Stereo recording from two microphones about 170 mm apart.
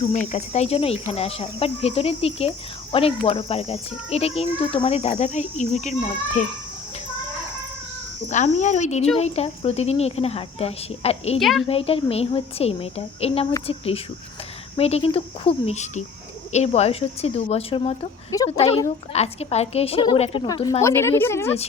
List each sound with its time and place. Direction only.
0.1 s speech: 40° left (ahead or behind)
8.3 s speech: 45° left (ahead or behind)
11.3 s a woman's voice: centre (ahead or behind)
11.7 s speech: 35° left (ahead or behind)
20.8 s a woman's voice: 15° left (ahead or behind)